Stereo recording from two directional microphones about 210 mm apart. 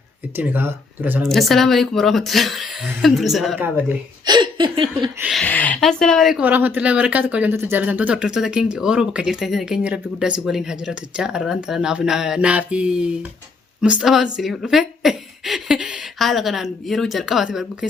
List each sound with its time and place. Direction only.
0.3 s speech: 10° right (ahead or behind)
1.3 s a woman's voice: centre (ahead or behind)
4.3 s a sound: 20° right (ahead or behind)
5.2 s a woman's voice: centre (ahead or behind)